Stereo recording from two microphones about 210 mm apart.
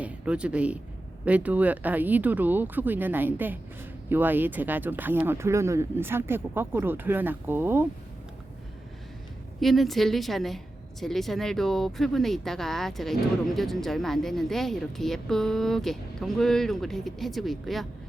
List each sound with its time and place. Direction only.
0.0 s speech: 5° right (ahead or behind)
9.6 s speech: centre (ahead or behind)